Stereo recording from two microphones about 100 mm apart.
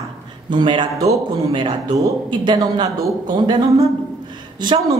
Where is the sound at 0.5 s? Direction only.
50° right (ahead or behind).